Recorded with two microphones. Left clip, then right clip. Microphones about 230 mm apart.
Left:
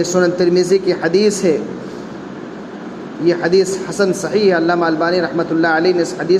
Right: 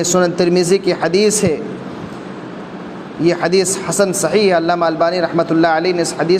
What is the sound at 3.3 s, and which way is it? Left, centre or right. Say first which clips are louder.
Speech: left 1 dB; right.